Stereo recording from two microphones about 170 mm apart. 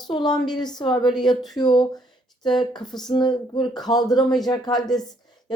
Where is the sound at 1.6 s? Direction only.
25° left (ahead or behind).